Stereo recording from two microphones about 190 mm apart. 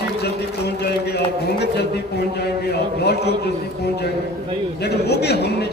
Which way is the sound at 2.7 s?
60° left (ahead or behind).